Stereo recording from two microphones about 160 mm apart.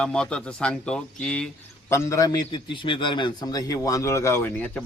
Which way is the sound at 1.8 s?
15° left (ahead or behind).